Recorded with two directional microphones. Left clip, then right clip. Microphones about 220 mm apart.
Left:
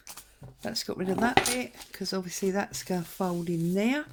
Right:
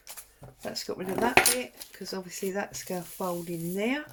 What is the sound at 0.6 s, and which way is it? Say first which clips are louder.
Speech: left 2 dB; 45° left (ahead or behind).